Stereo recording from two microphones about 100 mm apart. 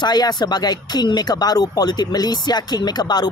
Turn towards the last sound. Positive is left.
turn(degrees=45)  # may be behind; listen again after turning